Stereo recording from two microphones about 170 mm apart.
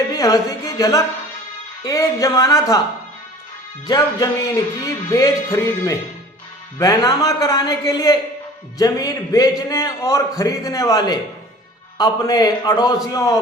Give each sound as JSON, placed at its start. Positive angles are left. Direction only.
{"t": 0.1, "sound": "a man's voice", "side_deg": 20}
{"t": 3.8, "sound": "a man's voice", "side_deg": 20}